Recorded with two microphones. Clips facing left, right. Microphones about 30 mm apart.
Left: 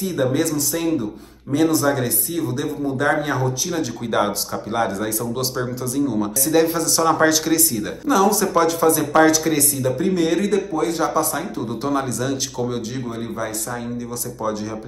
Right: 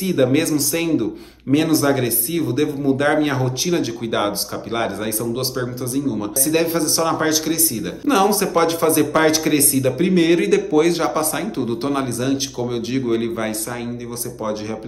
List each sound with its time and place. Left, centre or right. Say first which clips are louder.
0.0 s a man's voice: right 3 dB; right
0.7 s a man's voice: right 1 dB; right
1.5 s a man's voice: right 2 dB; right
3.7 s a man's voice: right 1 dB; centre
5.3 s speech: right 1 dB; centre
6.5 s speech: left 1 dB; right
8.1 s a man's voice: right 1 dB; right
10.5 s a man's voice: right 5 dB; right
11.0 s a man's voice: even; right
11.6 s a man's voice: right 1 dB; right
12.0 s a man's voice: right 2 dB; right
12.9 s a man's voice: right 7 dB; right